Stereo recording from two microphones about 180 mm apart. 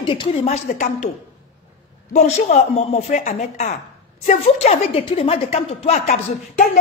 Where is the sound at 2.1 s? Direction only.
40° left (ahead or behind).